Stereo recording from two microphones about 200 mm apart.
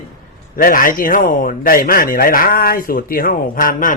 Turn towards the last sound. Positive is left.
turn(degrees=40)  # may be behind; listen again after turning